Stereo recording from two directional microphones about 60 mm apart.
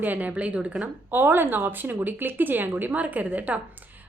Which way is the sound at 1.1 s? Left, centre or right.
Right.